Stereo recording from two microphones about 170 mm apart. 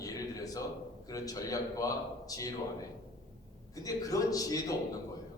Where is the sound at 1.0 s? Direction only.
20° left (ahead or behind).